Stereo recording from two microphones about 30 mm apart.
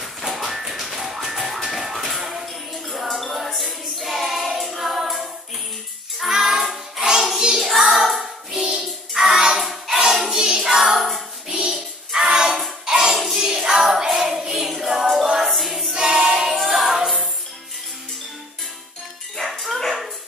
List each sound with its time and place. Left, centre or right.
0.0 s music: centre
7.6 s child singing: centre
10.0 s music: centre
10.5 s child singing: centre
10.8 s child singing: centre
11.4 s child singing: right
12.8 s music: right
13.1 s music: centre
13.4 s music: right; by 15.9 s centre
15.9 s choir: centre
16.5 s music: centre
19.4 s music: centre